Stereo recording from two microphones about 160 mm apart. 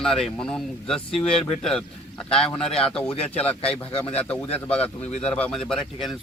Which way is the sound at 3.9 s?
35° left (ahead or behind).